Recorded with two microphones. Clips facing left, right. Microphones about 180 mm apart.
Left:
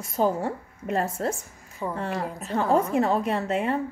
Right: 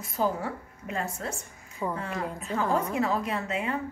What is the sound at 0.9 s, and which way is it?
Speech, 40° left (ahead or behind).